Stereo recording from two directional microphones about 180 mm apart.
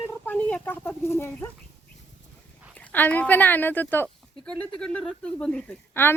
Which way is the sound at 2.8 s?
10° left (ahead or behind).